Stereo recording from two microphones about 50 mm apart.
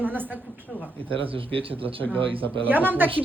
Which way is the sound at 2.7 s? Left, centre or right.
Right.